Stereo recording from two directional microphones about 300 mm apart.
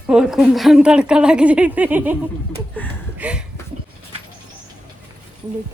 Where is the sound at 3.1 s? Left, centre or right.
Centre.